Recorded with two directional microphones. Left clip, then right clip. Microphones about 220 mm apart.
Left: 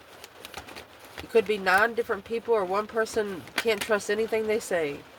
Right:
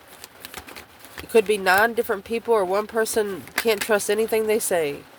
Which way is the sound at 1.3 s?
45° right (ahead or behind).